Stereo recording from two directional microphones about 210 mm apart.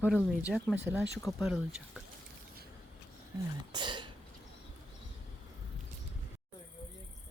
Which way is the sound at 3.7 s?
20° right (ahead or behind).